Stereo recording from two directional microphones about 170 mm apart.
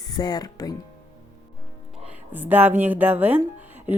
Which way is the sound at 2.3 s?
10° right (ahead or behind).